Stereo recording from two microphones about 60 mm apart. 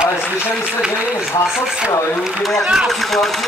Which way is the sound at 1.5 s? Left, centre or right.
Centre.